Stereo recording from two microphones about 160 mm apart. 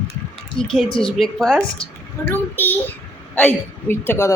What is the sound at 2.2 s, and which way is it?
Child singing, 10° left (ahead or behind).